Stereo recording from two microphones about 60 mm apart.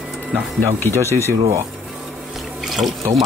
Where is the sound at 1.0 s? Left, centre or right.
Left.